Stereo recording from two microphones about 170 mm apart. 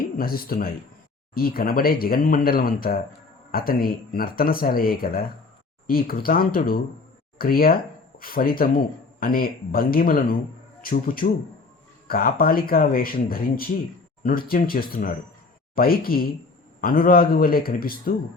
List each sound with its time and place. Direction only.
0.0 s speech: 60° left (ahead or behind)